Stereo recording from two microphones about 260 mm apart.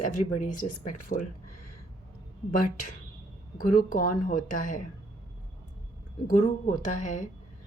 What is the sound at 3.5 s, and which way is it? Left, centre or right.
A woman's voice, left.